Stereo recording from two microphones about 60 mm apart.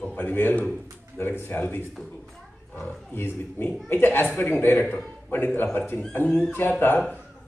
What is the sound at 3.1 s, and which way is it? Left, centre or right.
A man's voice, left.